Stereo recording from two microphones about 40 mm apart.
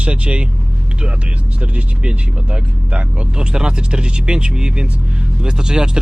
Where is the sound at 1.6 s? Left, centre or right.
Right.